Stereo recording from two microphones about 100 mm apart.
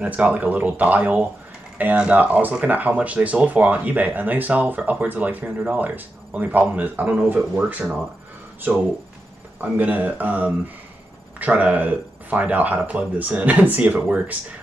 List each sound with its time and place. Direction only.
0.0 s speech: 15° right (ahead or behind)
9.6 s speech: 15° right (ahead or behind)